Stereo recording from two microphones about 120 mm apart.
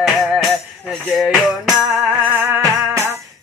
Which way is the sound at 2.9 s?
20° right (ahead or behind).